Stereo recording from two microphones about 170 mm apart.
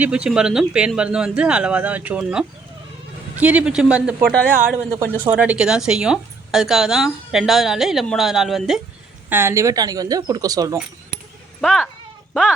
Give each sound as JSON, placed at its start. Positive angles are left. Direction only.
{"t": 0.0, "sound": "speech", "side_deg": -5}
{"t": 9.3, "sound": "speech", "side_deg": -15}
{"t": 11.6, "sound": "speech", "side_deg": 0}